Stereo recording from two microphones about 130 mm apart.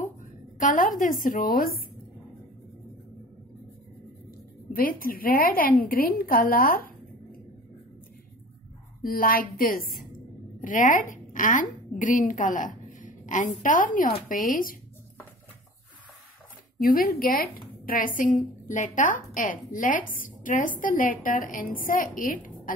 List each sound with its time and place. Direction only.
0.6 s a woman's voice: 90° left
4.7 s a woman's voice: 90° left
9.0 s a woman's voice: 90° left
16.7 s a woman's voice: 90° left